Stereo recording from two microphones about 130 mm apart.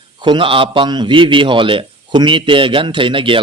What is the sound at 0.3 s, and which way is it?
Speech, 40° right (ahead or behind).